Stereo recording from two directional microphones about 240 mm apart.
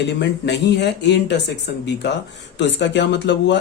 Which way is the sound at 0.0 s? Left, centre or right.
Left.